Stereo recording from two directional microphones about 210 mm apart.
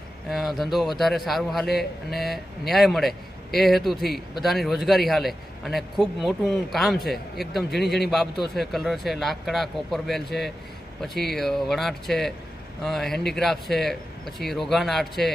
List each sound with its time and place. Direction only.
0.3 s a man's voice: centre (ahead or behind)
7.8 s a man's voice: 50° left (ahead or behind)
8.1 s a man's voice: centre (ahead or behind)